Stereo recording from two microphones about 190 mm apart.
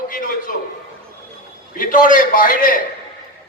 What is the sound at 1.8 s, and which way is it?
A woman's voice, 45° left (ahead or behind).